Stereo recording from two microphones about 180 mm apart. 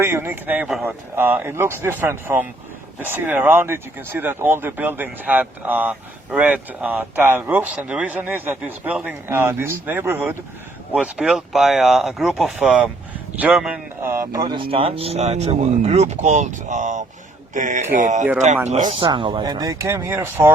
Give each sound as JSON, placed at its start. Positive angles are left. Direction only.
{"t": 0.0, "sound": "speech", "side_deg": -10}
{"t": 14.4, "sound": "speech", "side_deg": -25}
{"t": 18.9, "sound": "speech", "side_deg": -30}